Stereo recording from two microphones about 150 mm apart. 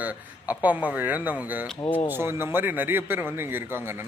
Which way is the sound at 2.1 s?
15° right (ahead or behind).